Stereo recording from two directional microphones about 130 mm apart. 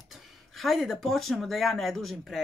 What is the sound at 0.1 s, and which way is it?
Speech, centre (ahead or behind).